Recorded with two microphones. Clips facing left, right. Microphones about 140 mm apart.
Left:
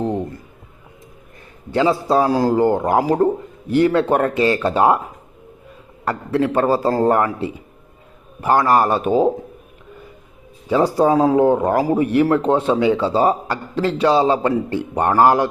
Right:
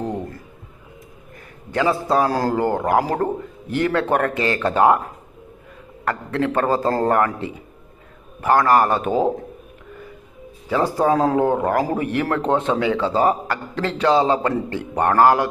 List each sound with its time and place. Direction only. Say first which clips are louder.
1.7 s a man's voice: left 3 dB; 20° left (ahead or behind)
6.1 s a man's voice: left 3 dB; 15° left (ahead or behind)
10.7 s a man's voice: left 3 dB; 20° left (ahead or behind)